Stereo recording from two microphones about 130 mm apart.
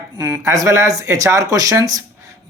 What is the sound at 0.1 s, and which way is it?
Speech, 30° right (ahead or behind).